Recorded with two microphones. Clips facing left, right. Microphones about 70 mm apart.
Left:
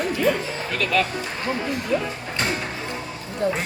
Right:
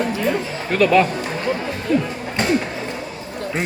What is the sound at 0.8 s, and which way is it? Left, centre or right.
Speech, right.